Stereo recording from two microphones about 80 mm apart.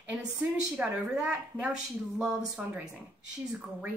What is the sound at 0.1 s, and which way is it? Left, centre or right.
A woman's voice, centre.